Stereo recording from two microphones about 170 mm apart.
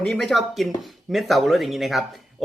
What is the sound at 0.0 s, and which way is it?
Speech, centre (ahead or behind).